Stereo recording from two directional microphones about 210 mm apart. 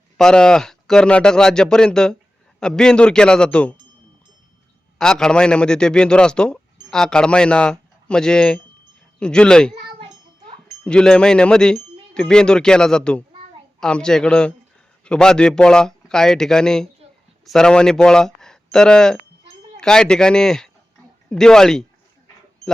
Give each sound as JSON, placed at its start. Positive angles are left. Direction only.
{"t": 0.2, "sound": "a man's voice", "side_deg": 5}
{"t": 4.9, "sound": "a man's voice", "side_deg": 5}
{"t": 9.8, "sound": "a sound", "side_deg": -25}
{"t": 10.8, "sound": "a man's voice", "side_deg": 5}